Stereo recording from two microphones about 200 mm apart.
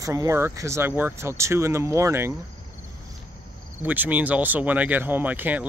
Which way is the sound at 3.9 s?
10° right (ahead or behind).